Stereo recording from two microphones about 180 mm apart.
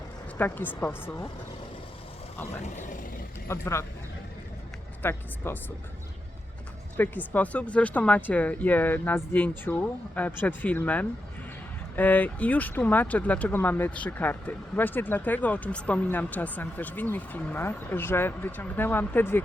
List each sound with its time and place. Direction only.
0.3 s speech: 10° left (ahead or behind)
2.6 s speech: 45° left (ahead or behind)
3.5 s speech: 15° left (ahead or behind)
5.0 s speech: 10° left (ahead or behind)
6.9 s speech: 10° left (ahead or behind)